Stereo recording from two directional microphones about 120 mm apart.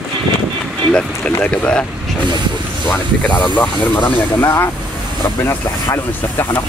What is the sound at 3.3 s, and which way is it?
Speech, 40° left (ahead or behind).